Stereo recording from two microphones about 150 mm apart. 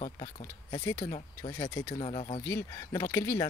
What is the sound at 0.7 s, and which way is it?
Speech, 25° left (ahead or behind).